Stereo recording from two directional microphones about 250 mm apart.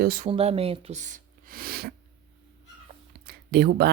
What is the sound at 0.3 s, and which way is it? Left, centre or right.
Speech, right.